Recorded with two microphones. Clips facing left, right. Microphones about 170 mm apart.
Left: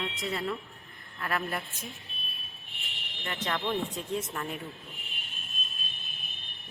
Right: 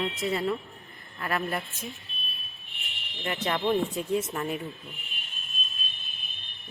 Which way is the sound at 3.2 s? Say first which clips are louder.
Right 5 dB; 10° right (ahead or behind).